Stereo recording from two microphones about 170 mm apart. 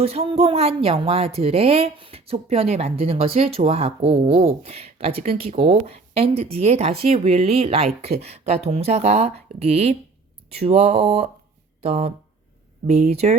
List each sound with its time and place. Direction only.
0.0 s a woman's voice: 35° right (ahead or behind)